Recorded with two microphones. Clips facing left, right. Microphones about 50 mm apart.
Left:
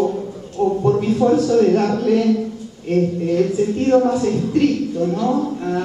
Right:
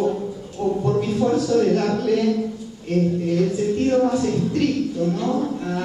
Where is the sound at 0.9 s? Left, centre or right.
Centre.